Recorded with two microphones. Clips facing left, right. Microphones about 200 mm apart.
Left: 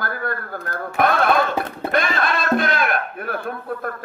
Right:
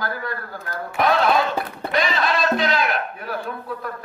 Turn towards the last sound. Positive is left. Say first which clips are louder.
# left 3 dB
turn(degrees=55)  # may be behind; listen again after turning